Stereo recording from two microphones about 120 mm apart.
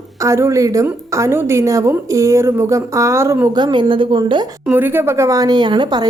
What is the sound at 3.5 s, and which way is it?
Speech, 40° right (ahead or behind).